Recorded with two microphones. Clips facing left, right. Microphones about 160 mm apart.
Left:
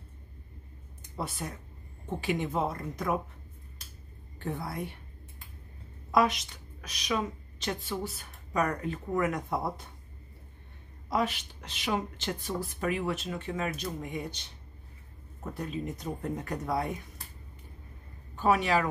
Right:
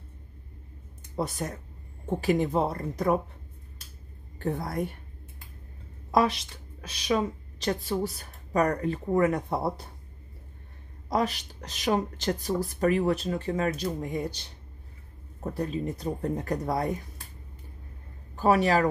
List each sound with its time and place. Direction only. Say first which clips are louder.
1.1 s a woman's voice: right 6 dB; 40° right (ahead or behind)
4.4 s a woman's voice: right 5 dB; 40° right (ahead or behind)
6.1 s a woman's voice: right 2 dB; 30° right (ahead or behind)
11.1 s a woman's voice: right 3 dB; 40° right (ahead or behind)
15.5 s a woman's voice: right 5 dB; 35° right (ahead or behind)
18.3 s a woman's voice: right 3 dB; 35° right (ahead or behind)